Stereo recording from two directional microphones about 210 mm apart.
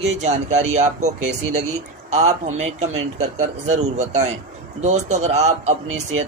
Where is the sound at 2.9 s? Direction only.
80° right.